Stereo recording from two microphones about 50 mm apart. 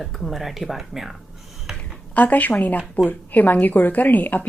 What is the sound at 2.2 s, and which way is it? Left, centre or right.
A woman's voice, left.